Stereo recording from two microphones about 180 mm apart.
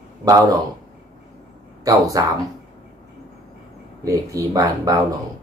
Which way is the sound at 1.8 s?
20° right (ahead or behind).